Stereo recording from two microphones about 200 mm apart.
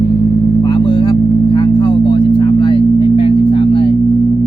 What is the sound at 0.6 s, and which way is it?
Vehicle, 20° left (ahead or behind).